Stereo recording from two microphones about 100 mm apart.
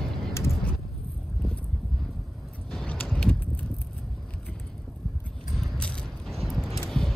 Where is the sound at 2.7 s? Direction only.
10° left (ahead or behind).